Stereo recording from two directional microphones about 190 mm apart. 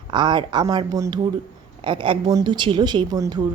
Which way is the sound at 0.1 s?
25° right (ahead or behind).